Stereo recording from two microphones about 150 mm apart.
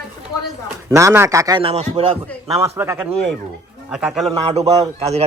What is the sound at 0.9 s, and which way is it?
Speech, 20° right (ahead or behind).